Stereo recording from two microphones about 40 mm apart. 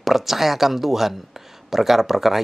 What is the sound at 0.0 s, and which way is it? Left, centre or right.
Speech, centre.